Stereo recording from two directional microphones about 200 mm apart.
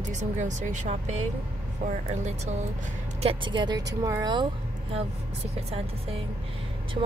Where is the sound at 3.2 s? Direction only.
25° right (ahead or behind).